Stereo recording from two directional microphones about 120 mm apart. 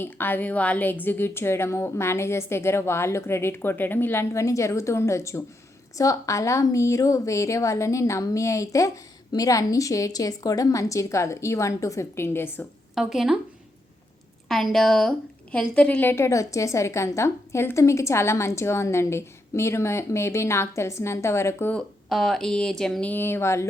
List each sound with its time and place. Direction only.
0.0 s a woman's voice: 15° left (ahead or behind)
12.9 s a woman's voice: 5° right (ahead or behind)
14.4 s a woman's voice: 5° left (ahead or behind); by 21.7 s 20° left (ahead or behind)
21.7 s speech: 5° left (ahead or behind); by 23.6 s 20° left (ahead or behind)